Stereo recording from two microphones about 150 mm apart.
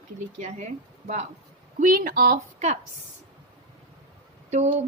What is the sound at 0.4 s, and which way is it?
Speech, 50° right (ahead or behind).